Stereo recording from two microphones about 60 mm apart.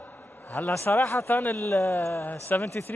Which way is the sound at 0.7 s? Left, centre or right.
Left.